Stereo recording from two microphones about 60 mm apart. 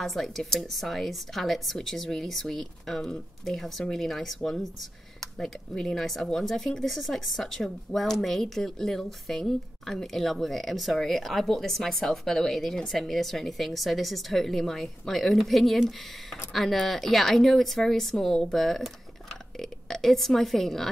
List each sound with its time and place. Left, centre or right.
0.0 s speech: centre